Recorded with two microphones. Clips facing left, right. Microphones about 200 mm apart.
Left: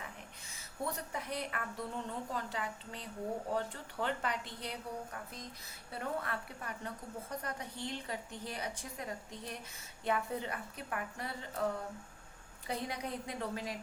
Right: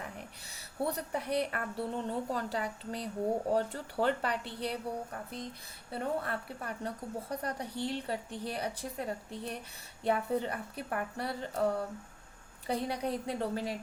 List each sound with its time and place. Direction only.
0.9 s a woman's voice: 35° right (ahead or behind)